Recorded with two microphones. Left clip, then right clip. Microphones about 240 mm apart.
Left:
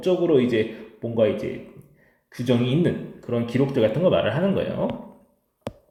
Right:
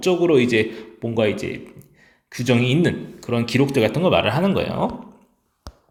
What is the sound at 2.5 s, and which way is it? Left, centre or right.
A man's voice, right.